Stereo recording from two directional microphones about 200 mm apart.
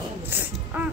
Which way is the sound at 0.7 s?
10° right (ahead or behind).